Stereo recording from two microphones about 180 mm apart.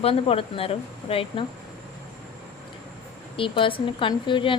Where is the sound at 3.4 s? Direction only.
30° left (ahead or behind).